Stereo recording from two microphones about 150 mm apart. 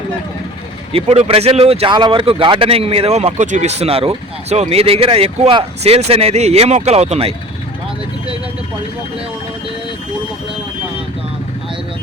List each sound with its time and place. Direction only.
0.9 s speech: 45° right (ahead or behind)